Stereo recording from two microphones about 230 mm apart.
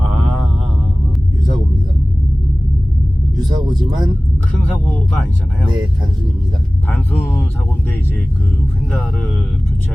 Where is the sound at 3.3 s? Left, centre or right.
Centre.